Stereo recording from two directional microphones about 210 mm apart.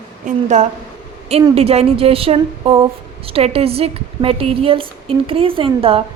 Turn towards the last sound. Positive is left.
turn(degrees=-25)  # may be behind; listen again after turning